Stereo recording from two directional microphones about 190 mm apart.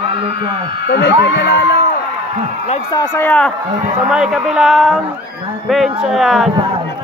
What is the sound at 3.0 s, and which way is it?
Speech, 10° left (ahead or behind).